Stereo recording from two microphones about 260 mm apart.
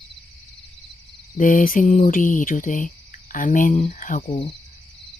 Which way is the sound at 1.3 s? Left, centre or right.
Left.